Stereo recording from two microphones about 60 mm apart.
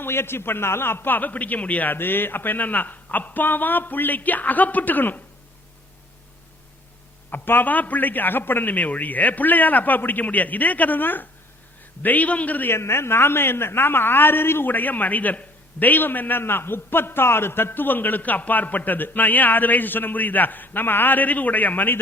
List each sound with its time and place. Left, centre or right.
0.0 s speech: left
7.3 s a man's voice: left
12.7 s speech: left